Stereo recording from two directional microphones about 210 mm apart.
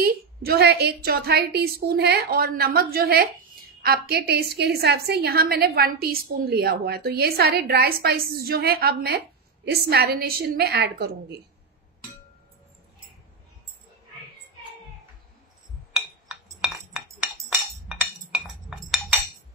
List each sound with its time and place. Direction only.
0.0 s a woman's voice: 45° right (ahead or behind)
18.3 s chink: centre (ahead or behind)